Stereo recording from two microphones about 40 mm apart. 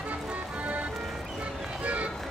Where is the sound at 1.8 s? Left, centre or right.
Right.